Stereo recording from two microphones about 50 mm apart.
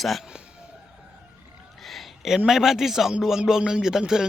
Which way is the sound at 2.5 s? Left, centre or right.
Centre.